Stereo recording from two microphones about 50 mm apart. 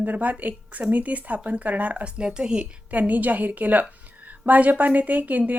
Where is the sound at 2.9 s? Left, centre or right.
Right.